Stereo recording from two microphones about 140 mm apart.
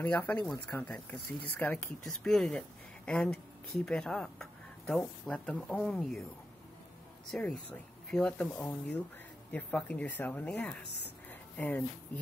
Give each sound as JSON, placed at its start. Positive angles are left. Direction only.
{"t": 0.0, "sound": "speech", "side_deg": 10}
{"t": 7.3, "sound": "speech", "side_deg": 5}